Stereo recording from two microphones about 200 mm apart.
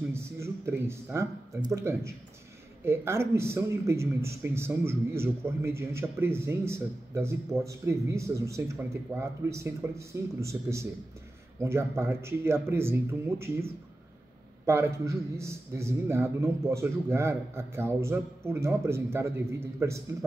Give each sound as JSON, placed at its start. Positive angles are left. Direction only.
{"t": 0.1, "sound": "speech", "side_deg": -15}
{"t": 14.7, "sound": "speech", "side_deg": -15}